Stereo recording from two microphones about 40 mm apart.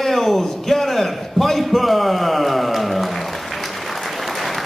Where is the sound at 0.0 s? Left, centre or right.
Centre.